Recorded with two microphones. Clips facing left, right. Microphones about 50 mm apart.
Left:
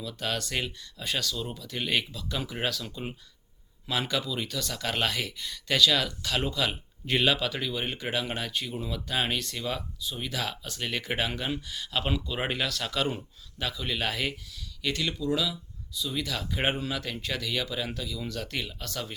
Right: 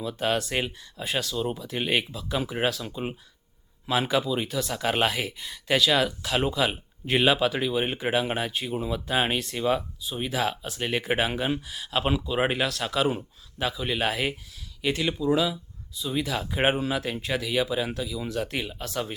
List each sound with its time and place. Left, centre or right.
0.0 s speech: right